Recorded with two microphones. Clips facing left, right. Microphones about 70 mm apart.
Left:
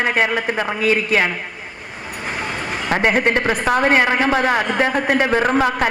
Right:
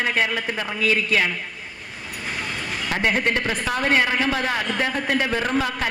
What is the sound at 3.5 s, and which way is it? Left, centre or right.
Speech, left.